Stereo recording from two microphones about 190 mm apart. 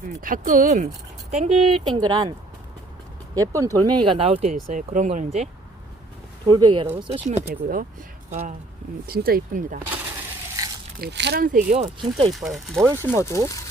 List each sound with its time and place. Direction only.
0.2 s speech: 45° right (ahead or behind); by 2.3 s 20° right (ahead or behind)
3.3 s speech: 15° right (ahead or behind)
4.7 s speech: 40° right (ahead or behind)
6.5 s speech: 25° right (ahead or behind)
7.4 s speech: 50° right (ahead or behind)
9.0 s speech: 50° right (ahead or behind)
11.0 s speech: 65° right (ahead or behind); by 12.0 s 35° right (ahead or behind)
12.3 s speech: centre (ahead or behind)
12.8 s speech: 15° right (ahead or behind)
13.1 s speech: 15° left (ahead or behind)